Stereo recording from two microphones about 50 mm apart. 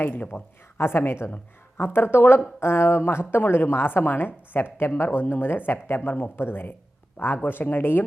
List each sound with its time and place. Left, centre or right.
0.0 s speech: left
0.8 s a woman's voice: left